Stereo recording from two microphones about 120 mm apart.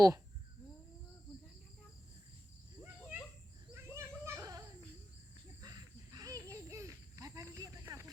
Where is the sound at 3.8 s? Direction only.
20° right (ahead or behind).